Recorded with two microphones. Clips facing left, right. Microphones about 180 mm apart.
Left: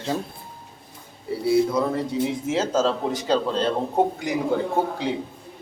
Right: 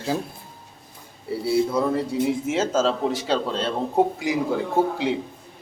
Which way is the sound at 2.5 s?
5° right (ahead or behind).